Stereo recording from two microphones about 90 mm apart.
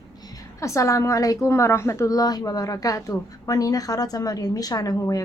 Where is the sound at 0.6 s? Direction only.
35° left (ahead or behind).